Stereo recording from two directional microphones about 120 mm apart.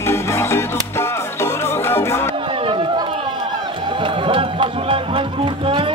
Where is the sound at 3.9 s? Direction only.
45° right (ahead or behind).